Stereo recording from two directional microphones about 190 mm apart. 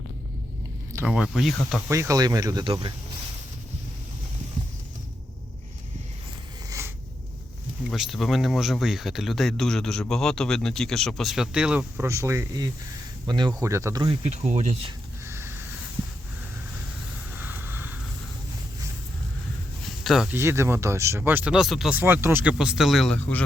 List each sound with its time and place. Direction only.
0.9 s speech: 5° right (ahead or behind)
1.9 s speech: 15° right (ahead or behind)
6.7 s a sound: 15° right (ahead or behind)
7.9 s speech: centre (ahead or behind); by 14.2 s 20° right (ahead or behind)
14.3 s speech: 35° right (ahead or behind)
15.3 s a sound: 15° right (ahead or behind)
17.3 s a sound: 10° right (ahead or behind)
20.1 s speech: centre (ahead or behind)
20.3 s speech: 15° right (ahead or behind); by 23.4 s 10° left (ahead or behind)